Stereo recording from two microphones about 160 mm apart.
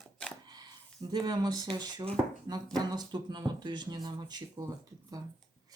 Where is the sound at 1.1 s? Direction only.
25° right (ahead or behind).